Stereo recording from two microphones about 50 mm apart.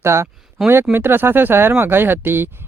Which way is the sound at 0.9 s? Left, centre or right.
Right.